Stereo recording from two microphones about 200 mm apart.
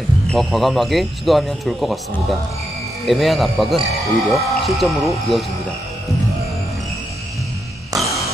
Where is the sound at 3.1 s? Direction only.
Centre (ahead or behind).